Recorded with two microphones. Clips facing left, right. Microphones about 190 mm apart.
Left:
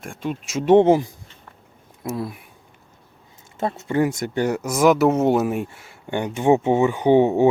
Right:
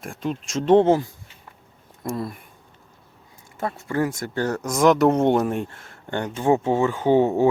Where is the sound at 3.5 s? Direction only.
20° left (ahead or behind).